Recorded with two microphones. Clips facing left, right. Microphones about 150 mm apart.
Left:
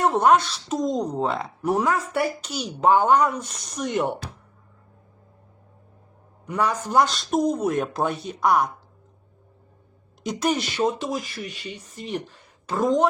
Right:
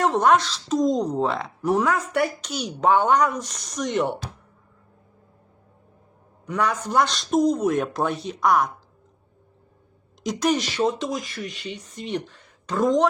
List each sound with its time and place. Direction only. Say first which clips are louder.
0.0 s a woman's voice: left 1 dB; 10° left (ahead or behind)
6.4 s a woman's voice: even; 5° left (ahead or behind)
10.2 s a woman's voice: right 2 dB; centre (ahead or behind)